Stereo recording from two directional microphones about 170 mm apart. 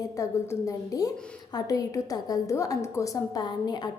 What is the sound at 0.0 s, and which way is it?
A woman's voice, 20° left (ahead or behind).